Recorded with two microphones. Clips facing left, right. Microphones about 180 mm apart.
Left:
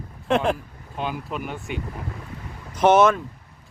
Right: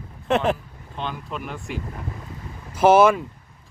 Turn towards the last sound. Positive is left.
turn(degrees=-10)  # may be behind; listen again after turning